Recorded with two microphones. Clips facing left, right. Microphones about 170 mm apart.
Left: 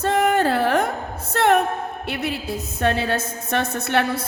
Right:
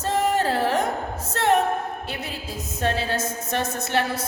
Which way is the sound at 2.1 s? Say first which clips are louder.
Left 6 dB; 65° left (ahead or behind).